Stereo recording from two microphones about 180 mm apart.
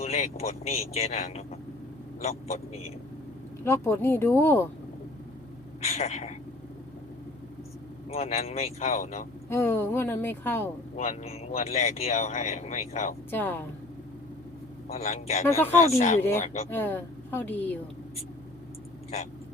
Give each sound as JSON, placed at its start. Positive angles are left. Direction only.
{"t": 0.0, "sound": "speech", "side_deg": 35}
{"t": 3.6, "sound": "speech", "side_deg": 15}
{"t": 5.8, "sound": "speech", "side_deg": 35}
{"t": 8.1, "sound": "speech", "side_deg": 35}
{"t": 9.5, "sound": "speech", "side_deg": 10}
{"t": 10.9, "sound": "speech", "side_deg": 40}
{"t": 13.3, "sound": "speech", "side_deg": 10}
{"t": 14.8, "sound": "speech", "side_deg": 35}
{"t": 16.6, "sound": "speech", "side_deg": 10}